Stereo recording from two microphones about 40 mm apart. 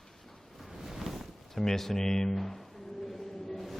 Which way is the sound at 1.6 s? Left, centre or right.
Centre.